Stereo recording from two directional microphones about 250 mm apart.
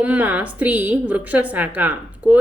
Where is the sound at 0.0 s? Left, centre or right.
Centre.